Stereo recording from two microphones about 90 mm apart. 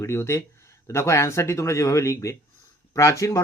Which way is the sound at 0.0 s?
30° left (ahead or behind).